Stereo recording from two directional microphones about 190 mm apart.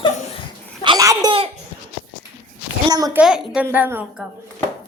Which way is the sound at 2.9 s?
20° right (ahead or behind).